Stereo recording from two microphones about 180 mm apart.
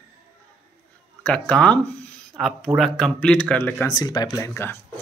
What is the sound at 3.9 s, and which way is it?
Speech, 20° left (ahead or behind).